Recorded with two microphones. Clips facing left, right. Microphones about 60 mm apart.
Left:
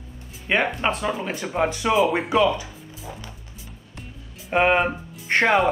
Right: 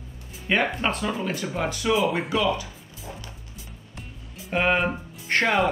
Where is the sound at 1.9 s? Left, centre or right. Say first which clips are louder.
Left 3 dB; centre.